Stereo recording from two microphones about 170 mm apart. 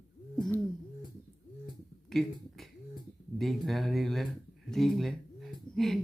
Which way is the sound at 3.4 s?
Centre (ahead or behind).